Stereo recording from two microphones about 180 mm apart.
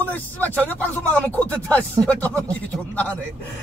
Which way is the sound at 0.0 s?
10° left (ahead or behind).